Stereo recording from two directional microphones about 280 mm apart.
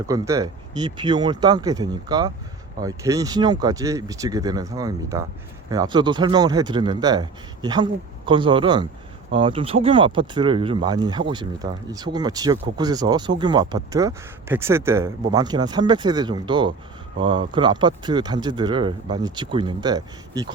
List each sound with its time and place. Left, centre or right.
0.1 s speech: centre